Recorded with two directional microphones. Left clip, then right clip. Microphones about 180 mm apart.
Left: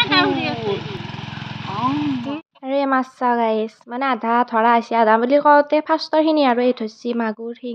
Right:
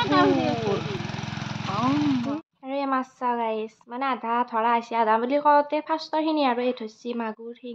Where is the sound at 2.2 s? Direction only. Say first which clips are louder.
Left 2 dB; centre (ahead or behind).